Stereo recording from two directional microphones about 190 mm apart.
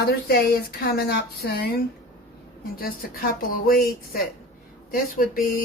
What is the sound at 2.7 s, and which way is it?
A woman's voice, 50° left (ahead or behind).